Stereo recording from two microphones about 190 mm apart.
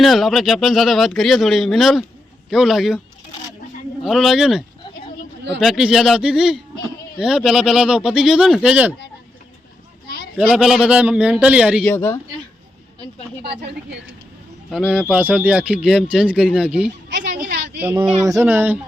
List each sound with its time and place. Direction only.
0.0 s speech: centre (ahead or behind)
4.0 s speech: centre (ahead or behind)
10.4 s speech: centre (ahead or behind)
11.9 s speech: 15° left (ahead or behind)
14.7 s speech: 5° right (ahead or behind)
17.2 s a sound: 60° right (ahead or behind)
17.7 s speech: 10° right (ahead or behind)